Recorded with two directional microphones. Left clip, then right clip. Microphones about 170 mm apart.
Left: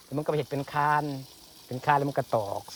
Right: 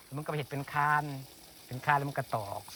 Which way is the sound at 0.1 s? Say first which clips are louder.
Left 8 dB; 25° left (ahead or behind).